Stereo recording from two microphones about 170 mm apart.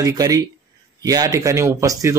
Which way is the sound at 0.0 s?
20° right (ahead or behind).